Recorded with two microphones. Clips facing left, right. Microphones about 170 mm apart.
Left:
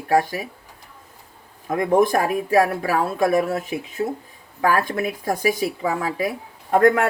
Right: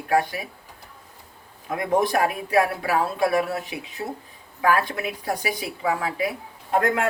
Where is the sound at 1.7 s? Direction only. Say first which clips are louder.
Left 4 dB; 45° left (ahead or behind).